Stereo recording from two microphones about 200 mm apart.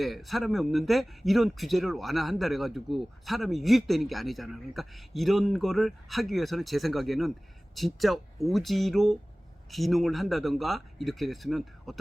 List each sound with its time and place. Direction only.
0.0 s speech: centre (ahead or behind)